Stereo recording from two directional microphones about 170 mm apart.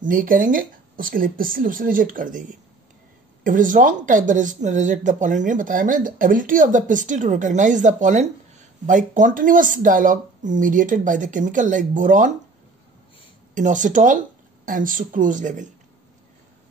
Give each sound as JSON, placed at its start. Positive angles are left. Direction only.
{"t": 0.0, "sound": "speech", "side_deg": -55}
{"t": 13.6, "sound": "speech", "side_deg": -50}